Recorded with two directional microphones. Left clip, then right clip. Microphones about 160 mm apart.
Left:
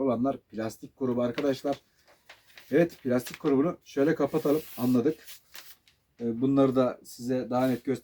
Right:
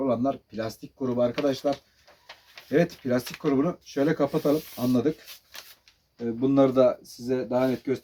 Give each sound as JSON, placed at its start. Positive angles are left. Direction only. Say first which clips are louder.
{"t": 0.0, "sound": "speech", "louder": "right 2 dB", "side_deg": -5}